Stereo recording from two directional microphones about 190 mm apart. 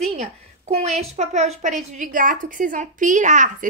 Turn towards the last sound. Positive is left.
turn(degrees=-40)  # may be behind; listen again after turning